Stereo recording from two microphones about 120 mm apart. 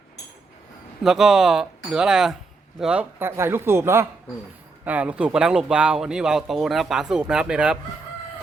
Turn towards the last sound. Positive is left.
turn(degrees=-5)  # may be behind; listen again after turning